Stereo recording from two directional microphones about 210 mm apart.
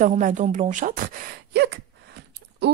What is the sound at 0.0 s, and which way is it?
A woman's voice, 35° right (ahead or behind).